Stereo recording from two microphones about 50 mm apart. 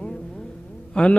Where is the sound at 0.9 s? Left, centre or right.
Left.